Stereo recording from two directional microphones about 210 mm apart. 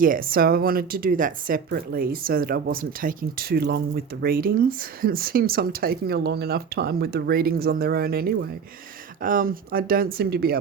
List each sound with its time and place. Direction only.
0.0 s speech: 45° right (ahead or behind)